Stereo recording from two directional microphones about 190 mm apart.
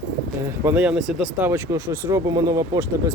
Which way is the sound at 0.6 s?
10° right (ahead or behind).